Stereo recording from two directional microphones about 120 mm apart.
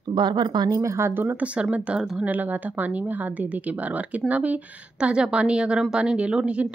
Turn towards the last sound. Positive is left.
turn(degrees=-10)  # may be behind; listen again after turning